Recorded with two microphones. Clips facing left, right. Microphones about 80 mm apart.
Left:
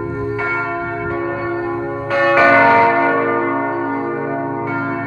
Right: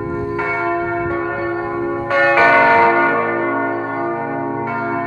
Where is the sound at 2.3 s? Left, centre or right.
Centre.